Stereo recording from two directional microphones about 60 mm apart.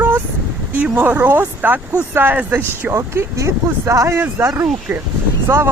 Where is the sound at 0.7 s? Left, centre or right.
Right.